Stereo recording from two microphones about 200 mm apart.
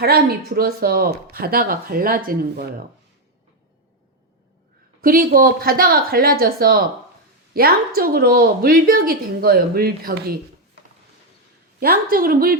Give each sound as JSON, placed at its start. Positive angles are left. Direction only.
{"t": 0.0, "sound": "speech", "side_deg": -50}
{"t": 4.9, "sound": "speech", "side_deg": -45}
{"t": 11.8, "sound": "speech", "side_deg": -50}